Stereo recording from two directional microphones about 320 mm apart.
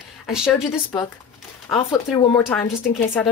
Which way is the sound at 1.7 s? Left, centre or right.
Centre.